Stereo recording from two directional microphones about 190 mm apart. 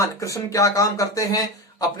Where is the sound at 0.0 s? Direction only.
15° left (ahead or behind).